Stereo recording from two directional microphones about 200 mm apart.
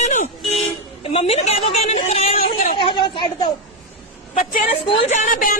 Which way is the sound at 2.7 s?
25° left (ahead or behind).